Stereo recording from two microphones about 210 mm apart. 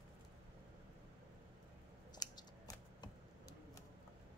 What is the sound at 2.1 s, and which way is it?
Scissors, 20° left (ahead or behind).